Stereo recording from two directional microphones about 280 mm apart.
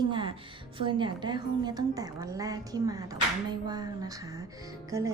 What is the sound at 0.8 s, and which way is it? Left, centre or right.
A woman's voice, centre.